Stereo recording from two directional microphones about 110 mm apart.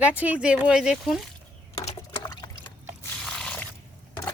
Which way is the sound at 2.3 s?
40° left (ahead or behind).